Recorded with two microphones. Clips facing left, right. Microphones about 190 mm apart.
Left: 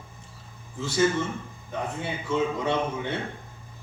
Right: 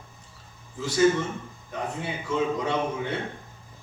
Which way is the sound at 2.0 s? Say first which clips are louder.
Left 1 dB; 25° left (ahead or behind).